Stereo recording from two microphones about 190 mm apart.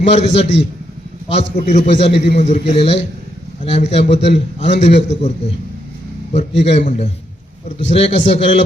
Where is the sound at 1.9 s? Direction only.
65° left (ahead or behind).